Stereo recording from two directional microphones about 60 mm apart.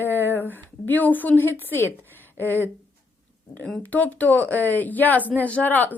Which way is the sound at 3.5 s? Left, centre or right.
Centre.